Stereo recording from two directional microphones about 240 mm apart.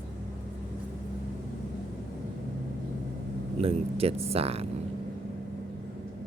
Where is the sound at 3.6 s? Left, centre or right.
Right.